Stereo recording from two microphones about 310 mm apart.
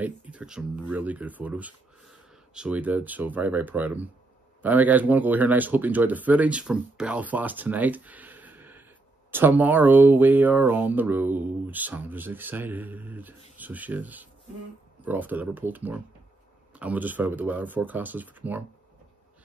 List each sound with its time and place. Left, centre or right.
0.0 s speech: centre